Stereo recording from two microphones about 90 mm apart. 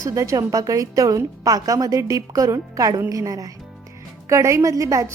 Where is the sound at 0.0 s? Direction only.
35° right (ahead or behind).